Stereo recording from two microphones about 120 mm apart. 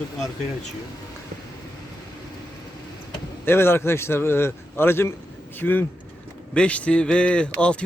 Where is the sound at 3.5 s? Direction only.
20° left (ahead or behind).